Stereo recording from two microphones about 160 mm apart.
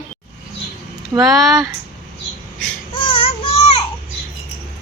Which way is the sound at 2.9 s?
35° left (ahead or behind).